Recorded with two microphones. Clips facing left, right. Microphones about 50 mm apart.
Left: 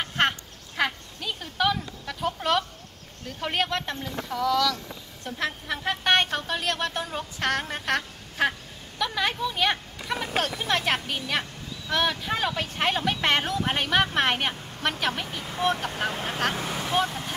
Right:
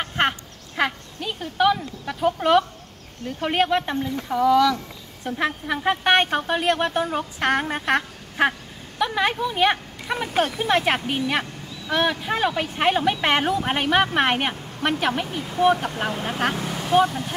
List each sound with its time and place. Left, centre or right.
0.0 s a sound: centre
3.3 s a woman's voice: centre
16.9 s a woman's voice: right